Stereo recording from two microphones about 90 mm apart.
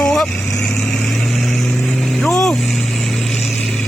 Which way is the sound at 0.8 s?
25° left (ahead or behind).